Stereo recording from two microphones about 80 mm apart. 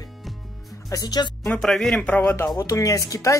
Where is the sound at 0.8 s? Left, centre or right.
Left.